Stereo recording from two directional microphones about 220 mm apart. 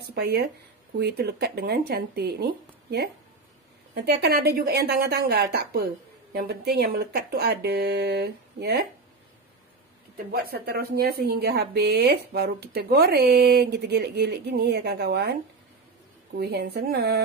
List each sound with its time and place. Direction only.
0.0 s speech: 45° right (ahead or behind)
10.1 s speech: 45° right (ahead or behind)
16.3 s speech: 45° right (ahead or behind)